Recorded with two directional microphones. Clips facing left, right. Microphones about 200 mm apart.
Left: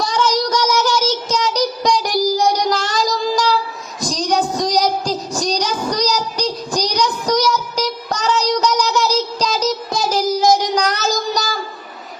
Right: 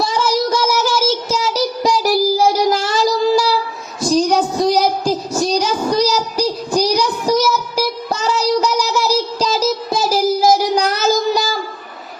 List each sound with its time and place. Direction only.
0.0 s child singing: 10° right (ahead or behind)
4.0 s a sound: 10° right (ahead or behind)
8.6 s child singing: 5° right (ahead or behind)